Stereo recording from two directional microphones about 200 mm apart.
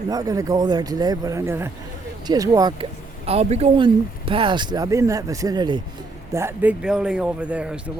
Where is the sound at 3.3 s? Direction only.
30° right (ahead or behind).